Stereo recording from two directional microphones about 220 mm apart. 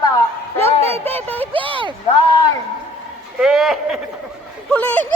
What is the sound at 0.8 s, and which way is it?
Speech, 10° left (ahead or behind).